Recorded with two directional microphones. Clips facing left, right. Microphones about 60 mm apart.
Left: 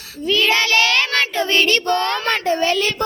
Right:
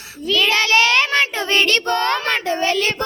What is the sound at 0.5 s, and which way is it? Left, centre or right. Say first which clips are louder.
Child singing: right 1 dB; right.